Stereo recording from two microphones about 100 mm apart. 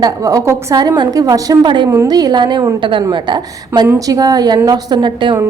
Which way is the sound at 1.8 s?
30° right (ahead or behind).